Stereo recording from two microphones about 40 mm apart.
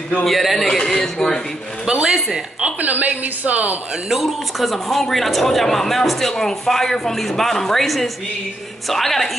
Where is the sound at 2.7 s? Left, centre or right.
Right.